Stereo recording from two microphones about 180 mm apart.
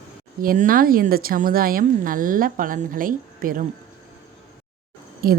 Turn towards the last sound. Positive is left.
turn(degrees=-55)  # may be behind; listen again after turning